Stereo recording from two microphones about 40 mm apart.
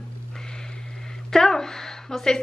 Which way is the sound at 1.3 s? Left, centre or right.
Centre.